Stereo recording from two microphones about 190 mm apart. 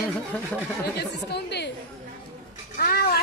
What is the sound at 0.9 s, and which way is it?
Speech, 60° left (ahead or behind).